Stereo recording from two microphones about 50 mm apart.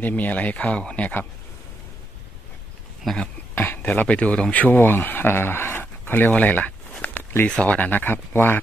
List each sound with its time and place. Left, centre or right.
0.0 s speech: left
3.1 s speech: centre
3.5 s speech: left
5.0 s a sound: left
7.4 s speech: left